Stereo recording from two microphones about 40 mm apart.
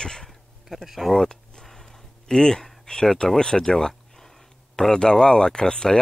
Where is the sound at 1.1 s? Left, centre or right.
Centre.